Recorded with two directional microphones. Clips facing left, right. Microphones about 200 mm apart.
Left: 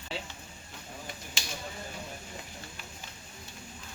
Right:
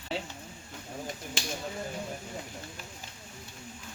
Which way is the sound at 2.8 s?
45° right (ahead or behind).